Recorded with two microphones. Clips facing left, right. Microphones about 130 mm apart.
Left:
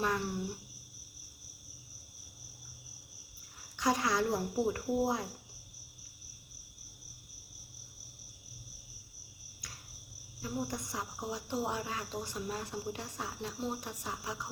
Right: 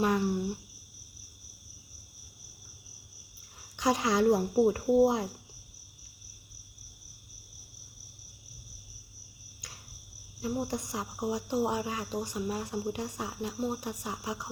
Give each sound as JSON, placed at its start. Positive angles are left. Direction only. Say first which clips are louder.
{"t": 0.0, "sound": "speech", "louder": "right 6 dB", "side_deg": -15}
{"t": 3.8, "sound": "speech", "louder": "right 4 dB", "side_deg": -20}
{"t": 10.4, "sound": "speech", "louder": "right 5 dB", "side_deg": -20}